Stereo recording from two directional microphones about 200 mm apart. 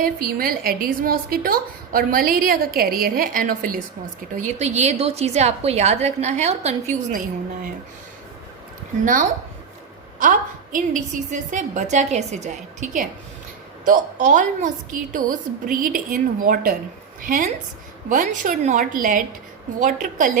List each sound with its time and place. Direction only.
0.0 s a woman's voice: 45° right (ahead or behind)
10.2 s a woman's voice: 40° right (ahead or behind)